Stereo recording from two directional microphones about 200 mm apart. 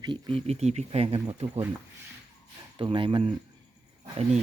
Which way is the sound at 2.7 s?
25° right (ahead or behind).